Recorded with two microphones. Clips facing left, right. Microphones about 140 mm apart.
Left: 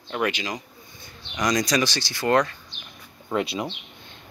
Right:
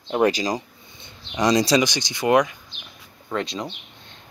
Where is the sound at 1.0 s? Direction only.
30° right (ahead or behind).